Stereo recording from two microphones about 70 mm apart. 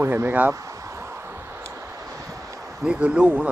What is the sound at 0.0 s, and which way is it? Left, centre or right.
Speech, right.